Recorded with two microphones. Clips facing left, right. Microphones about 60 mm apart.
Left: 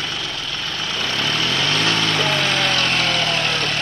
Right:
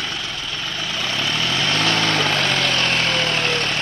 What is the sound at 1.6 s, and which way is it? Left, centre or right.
Vehicle, right.